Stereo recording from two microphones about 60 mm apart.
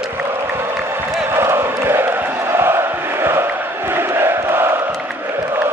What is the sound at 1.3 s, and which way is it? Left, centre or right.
Chant, right.